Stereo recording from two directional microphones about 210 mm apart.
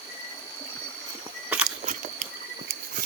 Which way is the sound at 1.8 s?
40° right (ahead or behind).